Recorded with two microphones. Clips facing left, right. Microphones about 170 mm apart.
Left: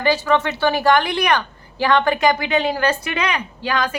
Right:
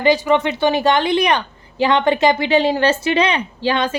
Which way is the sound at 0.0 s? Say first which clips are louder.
Right 3 dB; 20° right (ahead or behind).